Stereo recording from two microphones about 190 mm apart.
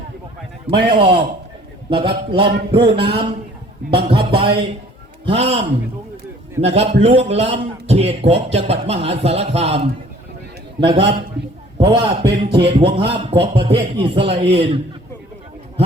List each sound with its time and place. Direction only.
0.9 s a man's voice: 30° right (ahead or behind)
2.4 s a sound: 60° right (ahead or behind)
2.7 s a man's voice: 25° right (ahead or behind)
6.6 s a man's voice: 35° right (ahead or behind)